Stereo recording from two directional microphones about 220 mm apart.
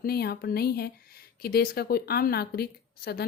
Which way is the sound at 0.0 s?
45° left (ahead or behind).